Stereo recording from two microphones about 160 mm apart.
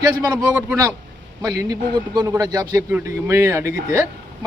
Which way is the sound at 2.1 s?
20° right (ahead or behind).